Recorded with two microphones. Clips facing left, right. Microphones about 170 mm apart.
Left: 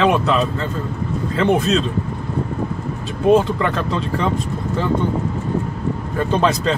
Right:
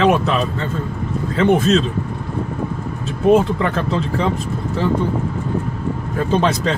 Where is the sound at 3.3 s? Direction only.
5° right (ahead or behind).